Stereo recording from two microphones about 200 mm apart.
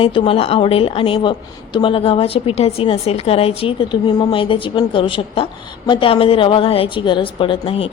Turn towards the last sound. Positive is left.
turn(degrees=25)  # may be behind; listen again after turning